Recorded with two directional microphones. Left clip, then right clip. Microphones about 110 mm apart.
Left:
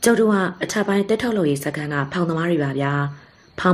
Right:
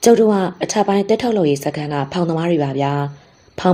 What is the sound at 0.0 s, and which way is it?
A woman's voice, 20° right (ahead or behind).